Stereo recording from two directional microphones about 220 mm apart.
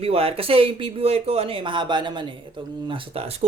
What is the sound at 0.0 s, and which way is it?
A man's voice, 25° right (ahead or behind).